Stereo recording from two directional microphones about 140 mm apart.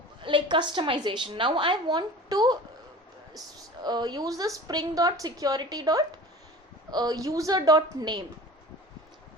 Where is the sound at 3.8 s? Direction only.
30° right (ahead or behind).